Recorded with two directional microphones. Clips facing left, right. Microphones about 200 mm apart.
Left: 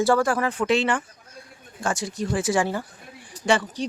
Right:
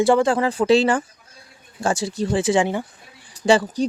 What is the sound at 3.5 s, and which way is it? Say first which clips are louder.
Speech: right 6 dB; 45° right (ahead or behind).